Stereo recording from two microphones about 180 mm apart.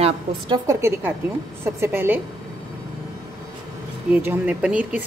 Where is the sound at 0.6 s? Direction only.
15° right (ahead or behind).